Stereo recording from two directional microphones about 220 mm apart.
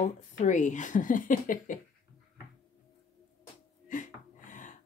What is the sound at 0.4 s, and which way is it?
A woman's voice, 35° left (ahead or behind).